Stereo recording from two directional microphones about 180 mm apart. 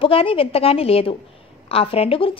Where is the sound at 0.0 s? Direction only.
30° left (ahead or behind).